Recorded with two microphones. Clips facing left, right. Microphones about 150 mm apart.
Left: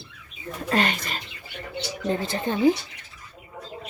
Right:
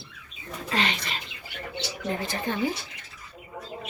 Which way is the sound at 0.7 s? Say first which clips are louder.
Left 4 dB; 45° left (ahead or behind).